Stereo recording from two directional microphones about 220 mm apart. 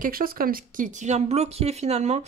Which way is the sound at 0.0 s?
40° right (ahead or behind).